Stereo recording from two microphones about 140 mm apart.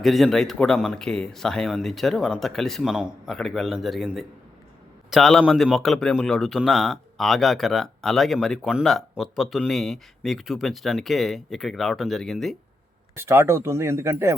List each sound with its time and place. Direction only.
0.0 s a man's voice: centre (ahead or behind)
13.1 s speech: 15° right (ahead or behind)